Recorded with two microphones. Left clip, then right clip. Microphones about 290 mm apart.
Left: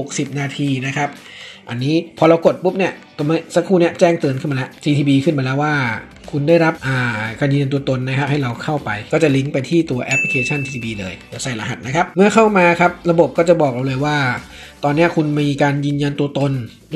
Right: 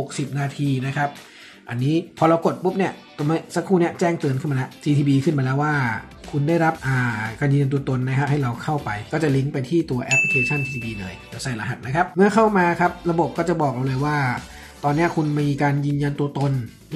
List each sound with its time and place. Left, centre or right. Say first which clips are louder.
0.4 s speech: left 3 dB; centre
1.8 s speech: left 5 dB; right
2.1 s speech: left 7 dB; centre
9.1 s speech: left 8 dB; centre